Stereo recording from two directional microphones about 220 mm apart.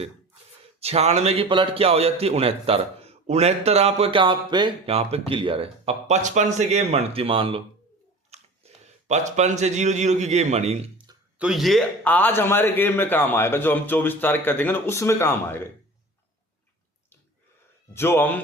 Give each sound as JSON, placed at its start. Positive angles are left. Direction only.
{"t": 0.6, "sound": "a man's voice", "side_deg": -30}
{"t": 11.3, "sound": "a man's voice", "side_deg": 0}
{"t": 17.9, "sound": "a man's voice", "side_deg": 10}